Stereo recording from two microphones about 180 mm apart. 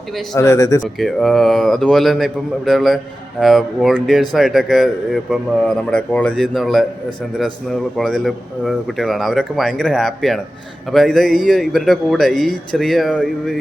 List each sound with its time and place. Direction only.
0.3 s speech: 15° left (ahead or behind)
0.9 s a man's voice: centre (ahead or behind)